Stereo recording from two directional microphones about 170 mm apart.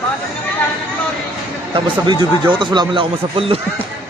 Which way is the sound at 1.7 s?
25° right (ahead or behind).